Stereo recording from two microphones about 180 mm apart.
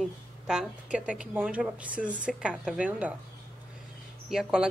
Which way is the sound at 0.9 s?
5° right (ahead or behind).